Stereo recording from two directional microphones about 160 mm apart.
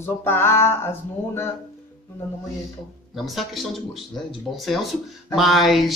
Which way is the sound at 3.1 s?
Centre (ahead or behind).